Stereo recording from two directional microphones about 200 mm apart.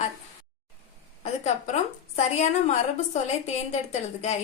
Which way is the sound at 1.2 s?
35° left (ahead or behind).